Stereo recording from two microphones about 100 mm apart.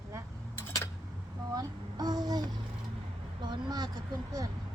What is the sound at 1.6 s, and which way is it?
Speech, 40° right (ahead or behind).